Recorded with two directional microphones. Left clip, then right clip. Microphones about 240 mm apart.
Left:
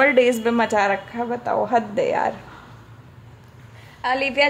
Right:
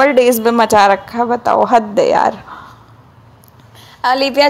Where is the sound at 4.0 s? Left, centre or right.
Centre.